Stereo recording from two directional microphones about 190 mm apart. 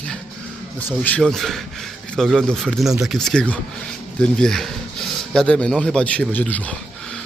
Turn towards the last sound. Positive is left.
turn(degrees=5)  # may be behind; listen again after turning